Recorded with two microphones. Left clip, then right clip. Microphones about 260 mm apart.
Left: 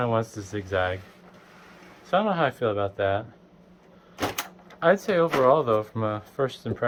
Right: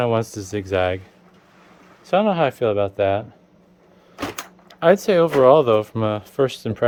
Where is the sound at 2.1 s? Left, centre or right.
Right.